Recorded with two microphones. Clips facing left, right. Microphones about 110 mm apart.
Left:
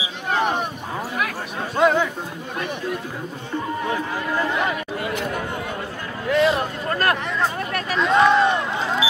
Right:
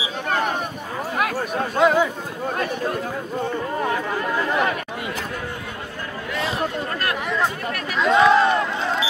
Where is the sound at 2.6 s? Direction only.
45° right (ahead or behind).